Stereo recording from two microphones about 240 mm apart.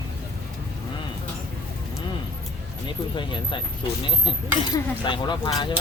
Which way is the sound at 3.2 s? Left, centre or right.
Centre.